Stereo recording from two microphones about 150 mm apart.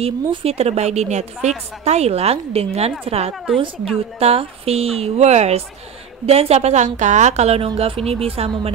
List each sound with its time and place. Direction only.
0.0 s a woman's voice: 40° right (ahead or behind)